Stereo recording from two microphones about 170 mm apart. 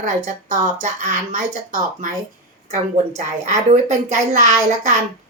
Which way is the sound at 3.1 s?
45° right (ahead or behind).